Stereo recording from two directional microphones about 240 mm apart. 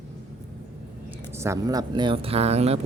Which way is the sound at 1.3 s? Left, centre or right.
Centre.